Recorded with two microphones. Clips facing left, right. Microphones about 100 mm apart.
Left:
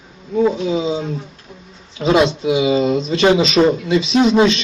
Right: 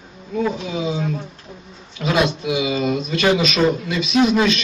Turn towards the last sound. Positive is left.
turn(degrees=25)  # may be behind; listen again after turning